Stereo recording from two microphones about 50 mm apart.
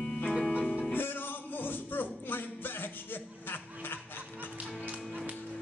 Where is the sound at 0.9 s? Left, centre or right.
Left.